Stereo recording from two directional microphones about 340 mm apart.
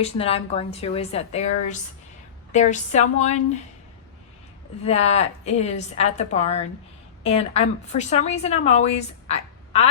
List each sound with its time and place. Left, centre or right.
0.0 s a woman's voice: centre
4.8 s speech: centre